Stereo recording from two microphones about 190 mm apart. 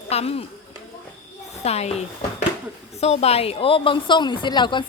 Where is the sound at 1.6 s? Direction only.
35° left (ahead or behind).